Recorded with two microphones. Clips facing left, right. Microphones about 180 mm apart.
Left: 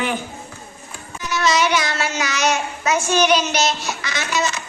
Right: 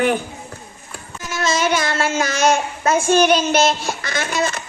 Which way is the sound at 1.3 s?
50° right (ahead or behind).